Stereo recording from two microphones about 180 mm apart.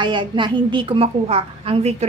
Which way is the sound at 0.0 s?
25° right (ahead or behind).